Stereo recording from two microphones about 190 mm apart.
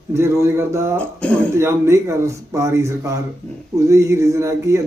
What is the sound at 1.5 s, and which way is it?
Speech, 15° right (ahead or behind).